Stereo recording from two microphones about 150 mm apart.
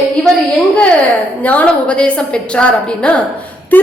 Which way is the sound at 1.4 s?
10° left (ahead or behind).